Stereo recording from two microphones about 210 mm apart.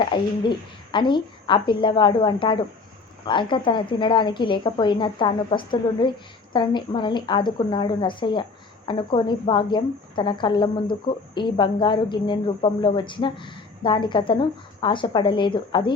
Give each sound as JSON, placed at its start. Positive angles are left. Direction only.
{"t": 0.0, "sound": "a woman's voice", "side_deg": 20}